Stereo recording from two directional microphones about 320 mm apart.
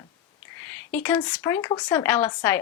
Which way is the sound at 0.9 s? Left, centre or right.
Centre.